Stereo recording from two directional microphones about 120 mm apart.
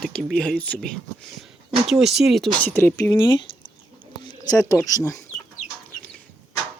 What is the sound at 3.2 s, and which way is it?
Speech, 45° left (ahead or behind).